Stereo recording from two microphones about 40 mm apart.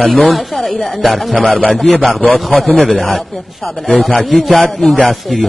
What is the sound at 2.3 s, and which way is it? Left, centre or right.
Speech, centre.